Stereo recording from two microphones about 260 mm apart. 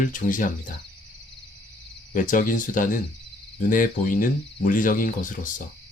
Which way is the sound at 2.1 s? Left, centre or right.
Left.